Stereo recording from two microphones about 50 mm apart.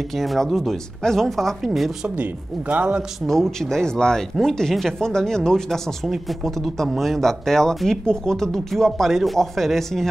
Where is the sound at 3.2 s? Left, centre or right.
Centre.